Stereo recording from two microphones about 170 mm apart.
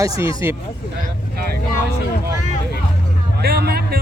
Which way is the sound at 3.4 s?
70° right (ahead or behind).